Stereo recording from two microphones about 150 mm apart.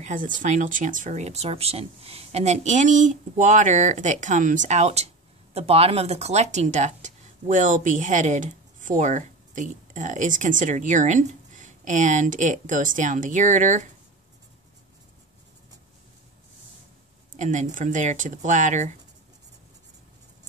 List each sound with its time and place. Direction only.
0.0 s speech: 60° right (ahead or behind)
17.4 s speech: 55° right (ahead or behind)